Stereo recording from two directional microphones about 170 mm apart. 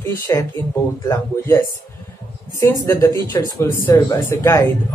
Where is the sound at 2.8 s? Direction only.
15° left (ahead or behind).